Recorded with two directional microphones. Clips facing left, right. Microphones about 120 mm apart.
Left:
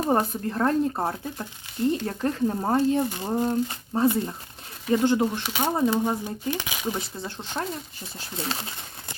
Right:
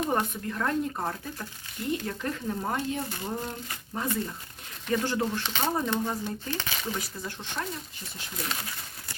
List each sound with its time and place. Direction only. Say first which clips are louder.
0.0 s speech: left 5 dB; 35° left (ahead or behind); by 7.0 s 15° left (ahead or behind)
7.0 s speech: left 3 dB; 30° left (ahead or behind)